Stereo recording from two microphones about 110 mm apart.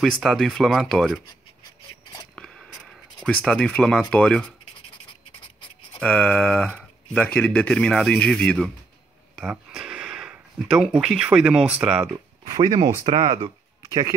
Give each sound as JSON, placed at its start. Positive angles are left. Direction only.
{"t": 0.2, "sound": "speech", "side_deg": 0}
{"t": 2.3, "sound": "a sound", "side_deg": 5}
{"t": 3.3, "sound": "speech", "side_deg": 5}
{"t": 5.9, "sound": "speech", "side_deg": 10}
{"t": 12.4, "sound": "speech", "side_deg": -40}